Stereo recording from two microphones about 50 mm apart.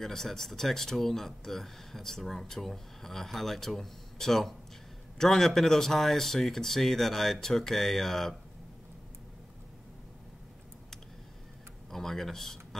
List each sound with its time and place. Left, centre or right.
0.0 s speech: centre
11.9 s speech: centre